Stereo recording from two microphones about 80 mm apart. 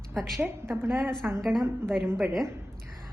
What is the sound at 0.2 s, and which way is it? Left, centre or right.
Speech, centre.